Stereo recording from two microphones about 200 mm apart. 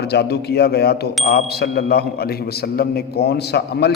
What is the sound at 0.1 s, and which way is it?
A man's voice, 55° left (ahead or behind).